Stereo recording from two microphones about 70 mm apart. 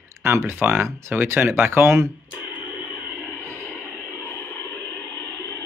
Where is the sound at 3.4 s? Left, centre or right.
Right.